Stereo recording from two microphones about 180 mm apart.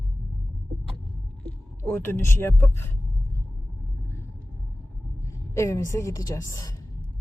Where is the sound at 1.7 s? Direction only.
10° left (ahead or behind).